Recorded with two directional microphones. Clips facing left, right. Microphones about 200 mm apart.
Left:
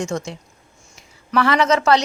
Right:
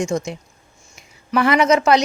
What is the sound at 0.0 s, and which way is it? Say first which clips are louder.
Speech: right 3 dB; 15° right (ahead or behind).